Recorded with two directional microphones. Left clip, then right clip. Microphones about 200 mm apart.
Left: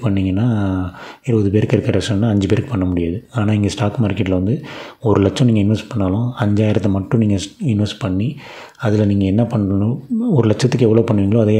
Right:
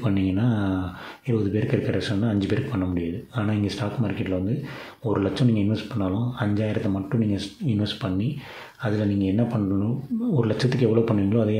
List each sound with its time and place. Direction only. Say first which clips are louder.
0.0 s speech: left 5 dB; 30° left (ahead or behind)